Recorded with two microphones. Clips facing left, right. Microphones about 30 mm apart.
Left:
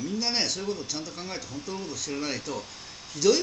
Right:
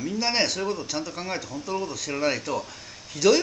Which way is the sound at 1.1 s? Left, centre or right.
Right.